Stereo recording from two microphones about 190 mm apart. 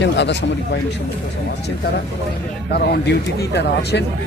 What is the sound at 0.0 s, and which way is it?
Speech, 65° left (ahead or behind).